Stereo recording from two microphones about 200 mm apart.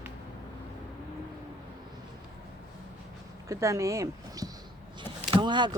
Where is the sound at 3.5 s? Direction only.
15° right (ahead or behind).